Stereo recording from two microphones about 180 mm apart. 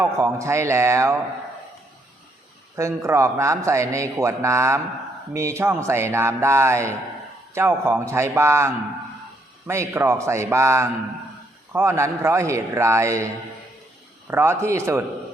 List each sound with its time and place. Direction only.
0.0 s a man's voice: 15° right (ahead or behind)
2.7 s a man's voice: 15° right (ahead or behind)
14.3 s a man's voice: 15° right (ahead or behind)